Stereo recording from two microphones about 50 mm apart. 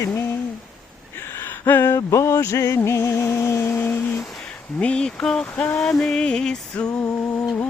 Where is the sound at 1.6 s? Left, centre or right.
Left.